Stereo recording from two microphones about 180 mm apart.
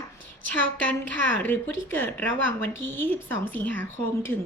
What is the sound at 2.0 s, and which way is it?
A woman's voice, 10° left (ahead or behind).